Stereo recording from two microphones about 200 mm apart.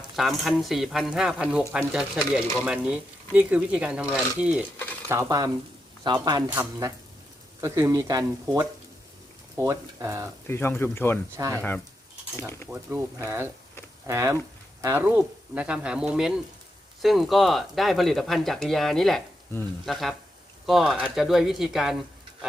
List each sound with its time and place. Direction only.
0.2 s speech: centre (ahead or behind)
5.0 s speech: 15° right (ahead or behind)
10.4 s speech: 10° left (ahead or behind)
12.7 s speech: 10° right (ahead or behind)